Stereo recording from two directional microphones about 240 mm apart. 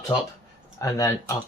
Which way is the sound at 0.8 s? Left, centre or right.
Centre.